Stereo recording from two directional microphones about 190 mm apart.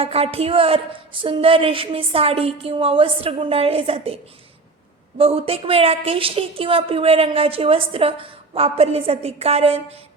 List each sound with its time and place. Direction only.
0.0 s a woman's voice: 30° right (ahead or behind)